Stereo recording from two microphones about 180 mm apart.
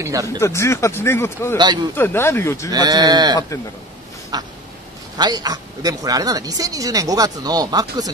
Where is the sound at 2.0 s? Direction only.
15° left (ahead or behind).